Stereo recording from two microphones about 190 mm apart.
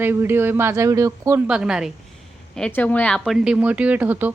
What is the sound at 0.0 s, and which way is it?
Speech, 10° right (ahead or behind).